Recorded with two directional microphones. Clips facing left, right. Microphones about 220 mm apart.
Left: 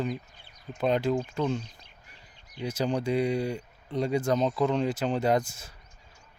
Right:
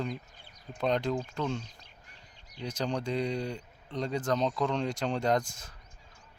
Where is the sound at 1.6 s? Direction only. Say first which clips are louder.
Left 2 dB; 40° right (ahead or behind).